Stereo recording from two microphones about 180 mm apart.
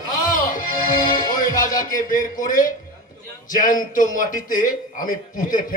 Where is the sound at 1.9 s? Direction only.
50° left (ahead or behind).